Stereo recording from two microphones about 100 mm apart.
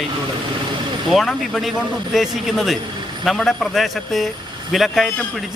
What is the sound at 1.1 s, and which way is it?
Speech, centre (ahead or behind).